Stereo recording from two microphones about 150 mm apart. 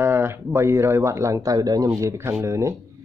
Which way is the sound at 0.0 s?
15° right (ahead or behind).